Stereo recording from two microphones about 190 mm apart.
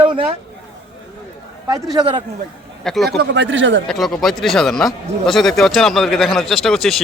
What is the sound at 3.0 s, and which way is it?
Speech, 65° right (ahead or behind).